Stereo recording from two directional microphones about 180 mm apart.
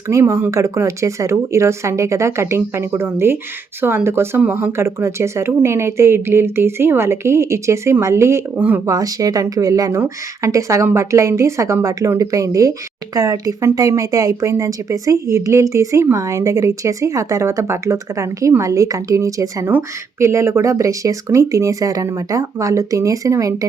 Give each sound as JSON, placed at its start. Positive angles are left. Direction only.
{"t": 0.1, "sound": "speech", "side_deg": -15}
{"t": 9.0, "sound": "a woman's voice", "side_deg": -20}